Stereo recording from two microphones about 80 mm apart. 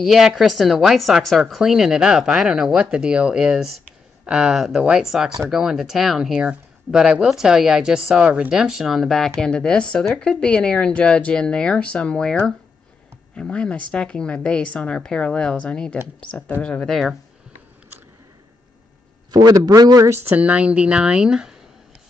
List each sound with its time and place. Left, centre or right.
0.0 s a woman's voice: centre
16.8 s a woman's voice: centre
19.3 s a man's voice: right
20.3 s speech: centre